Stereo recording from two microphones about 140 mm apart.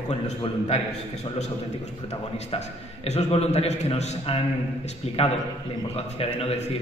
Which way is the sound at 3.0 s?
50° left (ahead or behind).